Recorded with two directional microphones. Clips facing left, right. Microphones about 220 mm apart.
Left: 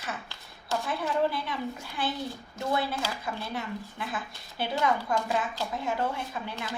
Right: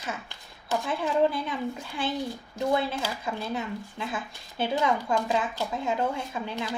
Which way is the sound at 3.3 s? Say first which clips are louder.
Right 3 dB; 25° right (ahead or behind).